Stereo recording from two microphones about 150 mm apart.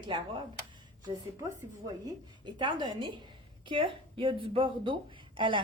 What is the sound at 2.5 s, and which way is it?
Speech, 30° right (ahead or behind).